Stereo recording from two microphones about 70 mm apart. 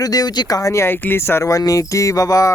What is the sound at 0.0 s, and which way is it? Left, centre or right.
Speech, left.